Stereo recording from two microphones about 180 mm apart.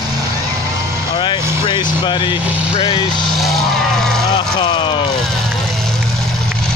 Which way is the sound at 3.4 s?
Centre (ahead or behind).